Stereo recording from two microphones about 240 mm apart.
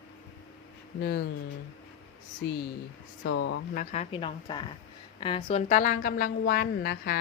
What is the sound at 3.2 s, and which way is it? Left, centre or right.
Speech, left.